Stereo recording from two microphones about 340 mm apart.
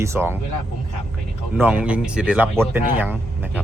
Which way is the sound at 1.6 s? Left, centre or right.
Centre.